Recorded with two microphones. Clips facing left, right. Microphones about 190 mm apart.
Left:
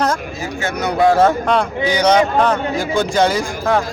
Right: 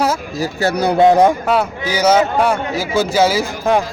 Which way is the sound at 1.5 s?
5° right (ahead or behind).